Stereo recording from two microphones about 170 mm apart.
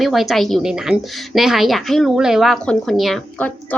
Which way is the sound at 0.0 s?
Centre (ahead or behind).